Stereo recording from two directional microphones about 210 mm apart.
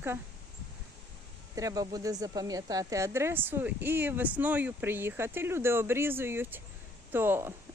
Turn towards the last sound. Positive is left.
turn(degrees=-10)  # may be behind; listen again after turning